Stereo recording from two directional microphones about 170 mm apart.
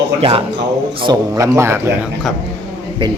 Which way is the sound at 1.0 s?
25° right (ahead or behind).